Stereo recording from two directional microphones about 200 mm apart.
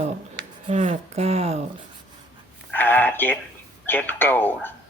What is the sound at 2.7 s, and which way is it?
Speech, 10° left (ahead or behind).